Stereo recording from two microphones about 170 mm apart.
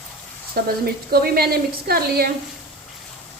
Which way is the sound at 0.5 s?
65° right (ahead or behind).